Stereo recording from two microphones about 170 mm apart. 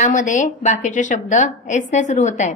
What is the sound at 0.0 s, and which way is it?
A woman's voice, 50° left (ahead or behind).